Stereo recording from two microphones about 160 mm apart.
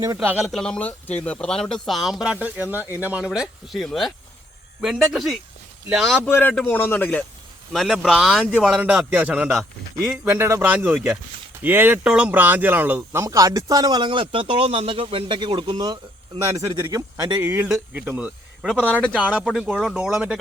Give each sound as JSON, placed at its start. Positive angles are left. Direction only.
{"t": 0.0, "sound": "speech", "side_deg": -20}
{"t": 0.3, "sound": "speech", "side_deg": -5}
{"t": 6.7, "sound": "speech", "side_deg": 15}
{"t": 7.7, "sound": "speech", "side_deg": 0}
{"t": 10.2, "sound": "speech", "side_deg": -15}
{"t": 17.4, "sound": "speech", "side_deg": -10}